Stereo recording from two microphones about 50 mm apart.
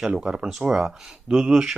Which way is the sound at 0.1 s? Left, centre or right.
Centre.